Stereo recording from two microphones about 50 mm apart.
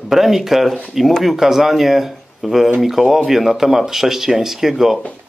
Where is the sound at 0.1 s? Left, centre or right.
Centre.